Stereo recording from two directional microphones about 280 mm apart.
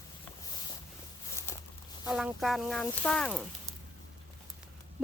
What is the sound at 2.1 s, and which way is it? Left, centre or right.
Speech, centre.